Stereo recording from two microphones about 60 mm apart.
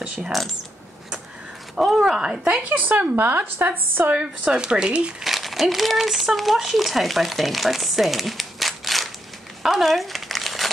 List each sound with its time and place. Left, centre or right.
2.0 s speech: centre
2.8 s a woman's voice: right
4.2 s speech: centre
5.2 s speech: centre
9.6 s crumpling: centre